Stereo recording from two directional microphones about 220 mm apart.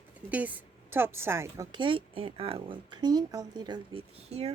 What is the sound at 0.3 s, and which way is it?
A woman's voice, 5° right (ahead or behind).